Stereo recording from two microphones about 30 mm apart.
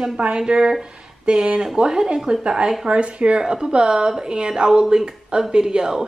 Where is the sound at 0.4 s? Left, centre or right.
Right.